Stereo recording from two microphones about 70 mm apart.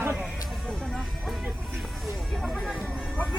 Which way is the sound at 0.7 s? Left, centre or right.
Centre.